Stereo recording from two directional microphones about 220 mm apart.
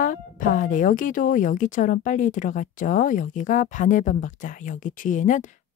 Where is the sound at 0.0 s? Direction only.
35° left (ahead or behind).